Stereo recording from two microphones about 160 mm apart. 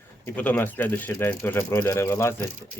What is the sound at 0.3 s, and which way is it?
Speech, 10° left (ahead or behind).